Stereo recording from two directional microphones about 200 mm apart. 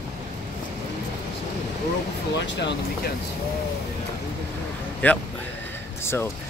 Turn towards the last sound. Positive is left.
turn(degrees=10)  # may be behind; listen again after turning